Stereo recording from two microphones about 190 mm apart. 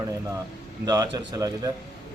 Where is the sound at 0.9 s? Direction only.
20° right (ahead or behind).